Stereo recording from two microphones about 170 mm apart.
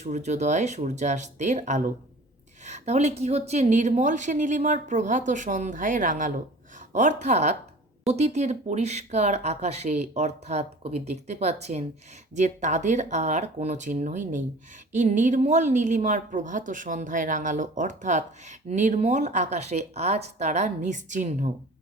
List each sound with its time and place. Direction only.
0.0 s a woman's voice: 40° right (ahead or behind)